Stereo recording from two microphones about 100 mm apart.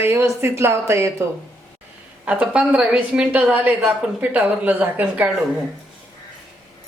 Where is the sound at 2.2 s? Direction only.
15° right (ahead or behind).